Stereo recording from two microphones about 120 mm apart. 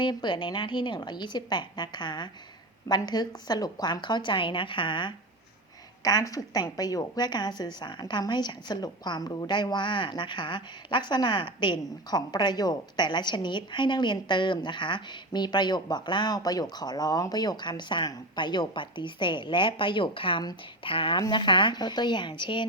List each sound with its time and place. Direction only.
0.0 s a woman's voice: 40° left (ahead or behind)